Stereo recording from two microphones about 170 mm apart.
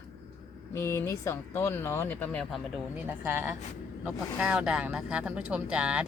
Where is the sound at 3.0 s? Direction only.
15° right (ahead or behind).